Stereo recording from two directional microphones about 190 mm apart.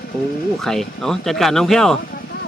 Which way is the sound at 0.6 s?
Centre (ahead or behind).